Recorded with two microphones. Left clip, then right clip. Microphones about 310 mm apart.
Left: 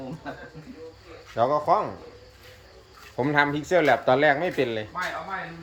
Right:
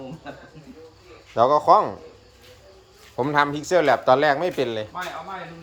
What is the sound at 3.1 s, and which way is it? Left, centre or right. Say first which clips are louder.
Speech: right 2 dB; centre.